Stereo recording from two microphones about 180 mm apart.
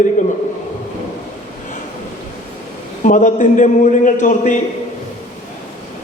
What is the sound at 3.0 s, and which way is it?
A man's voice, 45° left (ahead or behind).